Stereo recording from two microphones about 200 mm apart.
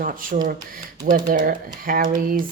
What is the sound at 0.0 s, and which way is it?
Speech, 45° right (ahead or behind).